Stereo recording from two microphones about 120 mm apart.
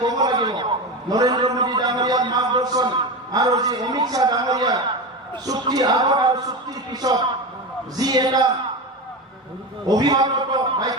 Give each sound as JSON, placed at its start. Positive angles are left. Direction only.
{"t": 0.0, "sound": "a sound", "side_deg": -35}
{"t": 3.3, "sound": "a man's voice", "side_deg": -30}
{"t": 9.9, "sound": "a man's voice", "side_deg": -35}